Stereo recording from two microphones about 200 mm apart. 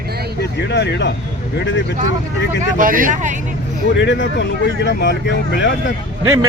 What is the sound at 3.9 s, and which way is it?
Speech, 65° left (ahead or behind).